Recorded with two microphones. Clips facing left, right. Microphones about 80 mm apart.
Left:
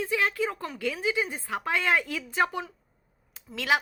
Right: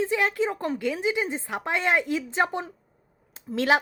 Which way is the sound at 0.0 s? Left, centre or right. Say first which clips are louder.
Right 3 dB; right.